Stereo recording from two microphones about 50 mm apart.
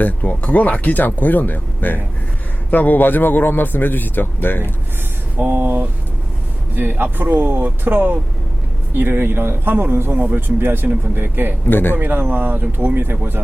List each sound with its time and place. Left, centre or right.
0.0 s a man's voice: left
5.4 s speech: right
6.7 s speech: right
11.6 s a man's voice: left
11.9 s speech: right